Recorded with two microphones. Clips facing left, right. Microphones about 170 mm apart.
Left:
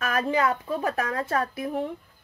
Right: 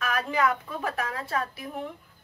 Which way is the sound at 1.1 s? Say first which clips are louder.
Left 4 dB; 50° left (ahead or behind).